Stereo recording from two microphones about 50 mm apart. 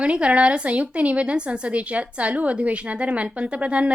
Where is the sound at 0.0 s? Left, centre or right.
Right.